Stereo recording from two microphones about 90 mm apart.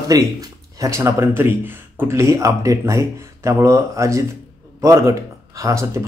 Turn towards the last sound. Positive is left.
turn(degrees=-35)  # may be behind; listen again after turning